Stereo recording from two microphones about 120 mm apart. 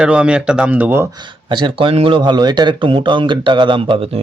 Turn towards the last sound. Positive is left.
turn(degrees=-50)  # may be behind; listen again after turning